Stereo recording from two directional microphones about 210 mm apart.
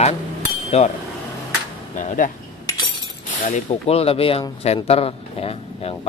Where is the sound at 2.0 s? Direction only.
40° left (ahead or behind).